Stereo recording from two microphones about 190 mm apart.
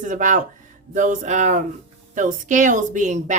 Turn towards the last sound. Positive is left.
turn(degrees=-40)  # may be behind; listen again after turning